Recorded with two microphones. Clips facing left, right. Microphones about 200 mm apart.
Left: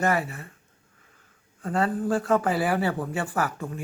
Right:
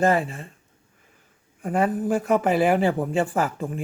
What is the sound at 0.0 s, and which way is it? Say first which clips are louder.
Speech: right 4 dB; 25° right (ahead or behind).